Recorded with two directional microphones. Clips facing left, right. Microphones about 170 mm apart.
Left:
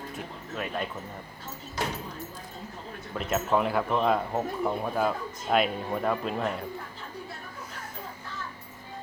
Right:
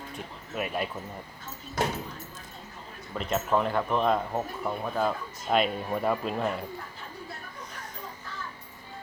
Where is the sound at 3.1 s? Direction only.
5° left (ahead or behind).